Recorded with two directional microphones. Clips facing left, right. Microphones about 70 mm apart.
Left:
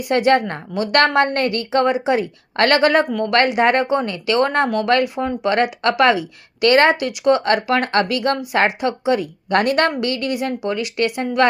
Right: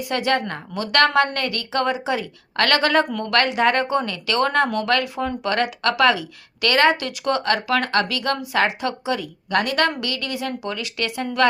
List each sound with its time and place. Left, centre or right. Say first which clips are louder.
0.1 s a woman's voice: left 7 dB; left